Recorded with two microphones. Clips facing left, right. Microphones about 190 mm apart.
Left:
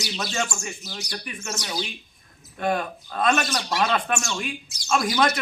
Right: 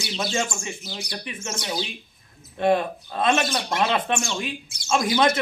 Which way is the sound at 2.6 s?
25° right (ahead or behind).